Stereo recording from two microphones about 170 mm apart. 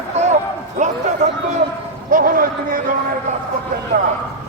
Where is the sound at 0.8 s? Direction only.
45° right (ahead or behind).